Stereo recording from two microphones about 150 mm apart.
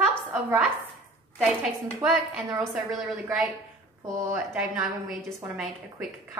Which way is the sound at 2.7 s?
5° right (ahead or behind).